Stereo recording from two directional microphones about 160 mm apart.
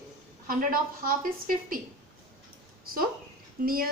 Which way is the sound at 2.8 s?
65° right (ahead or behind).